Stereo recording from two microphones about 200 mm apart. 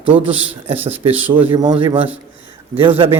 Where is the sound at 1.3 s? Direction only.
25° right (ahead or behind).